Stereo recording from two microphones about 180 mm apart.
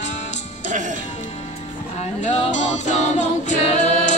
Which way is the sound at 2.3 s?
40° left (ahead or behind).